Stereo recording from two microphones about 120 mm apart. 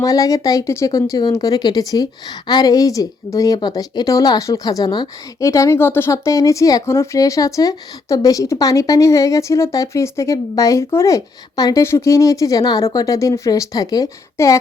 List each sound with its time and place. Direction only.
0.0 s speech: 30° left (ahead or behind)
5.5 s speech: 25° left (ahead or behind)